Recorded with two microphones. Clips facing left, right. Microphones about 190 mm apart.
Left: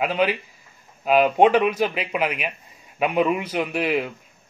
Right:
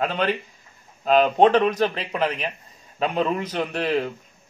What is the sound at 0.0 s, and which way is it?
A man's voice, 10° left (ahead or behind).